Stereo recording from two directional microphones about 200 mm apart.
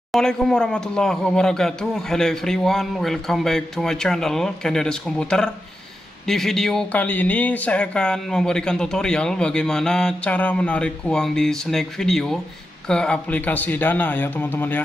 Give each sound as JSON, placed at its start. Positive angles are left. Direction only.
{"t": 0.1, "sound": "speech", "side_deg": 5}